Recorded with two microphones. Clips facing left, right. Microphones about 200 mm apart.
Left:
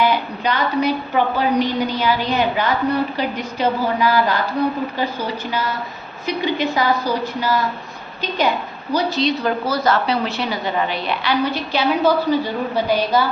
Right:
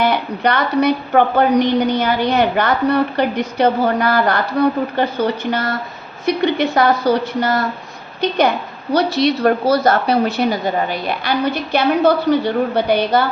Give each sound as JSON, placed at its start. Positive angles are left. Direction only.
{"t": 0.0, "sound": "a woman's voice", "side_deg": -65}
{"t": 8.9, "sound": "speech", "side_deg": -70}